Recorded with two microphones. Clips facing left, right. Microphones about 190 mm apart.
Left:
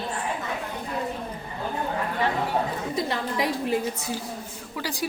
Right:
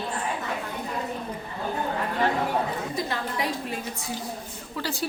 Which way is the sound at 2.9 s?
20° left (ahead or behind).